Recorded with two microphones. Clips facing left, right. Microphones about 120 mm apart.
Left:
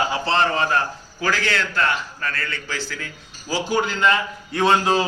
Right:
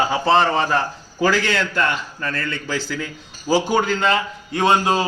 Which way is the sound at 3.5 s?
60° right (ahead or behind).